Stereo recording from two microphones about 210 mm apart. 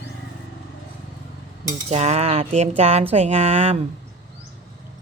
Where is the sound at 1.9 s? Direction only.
30° right (ahead or behind).